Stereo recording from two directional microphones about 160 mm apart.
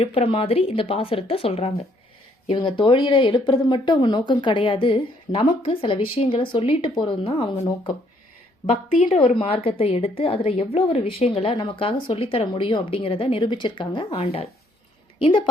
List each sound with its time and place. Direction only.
0.0 s speech: 35° left (ahead or behind)
8.7 s a woman's voice: 50° left (ahead or behind)
9.1 s a woman's voice: 35° left (ahead or behind)